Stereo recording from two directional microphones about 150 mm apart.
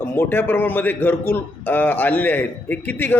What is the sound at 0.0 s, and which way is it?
A man's voice, 15° left (ahead or behind).